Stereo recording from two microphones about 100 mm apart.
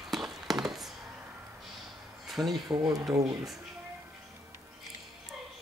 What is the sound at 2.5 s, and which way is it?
Speech, 40° right (ahead or behind).